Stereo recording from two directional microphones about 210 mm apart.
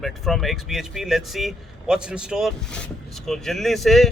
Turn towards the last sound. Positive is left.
turn(degrees=0)  # may be behind; listen again after turning